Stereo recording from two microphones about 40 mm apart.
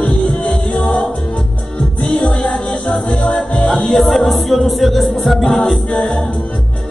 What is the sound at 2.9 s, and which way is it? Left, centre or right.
Music, centre.